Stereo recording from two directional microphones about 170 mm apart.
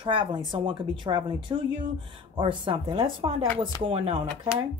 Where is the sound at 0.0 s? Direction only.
25° right (ahead or behind).